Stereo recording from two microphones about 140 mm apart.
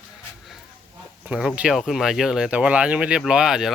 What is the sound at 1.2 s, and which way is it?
Speech, 10° right (ahead or behind).